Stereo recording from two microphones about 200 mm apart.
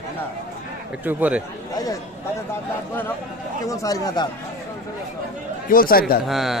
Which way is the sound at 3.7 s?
15° left (ahead or behind).